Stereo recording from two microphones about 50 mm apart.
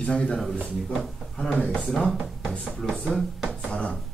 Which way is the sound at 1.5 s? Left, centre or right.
Left.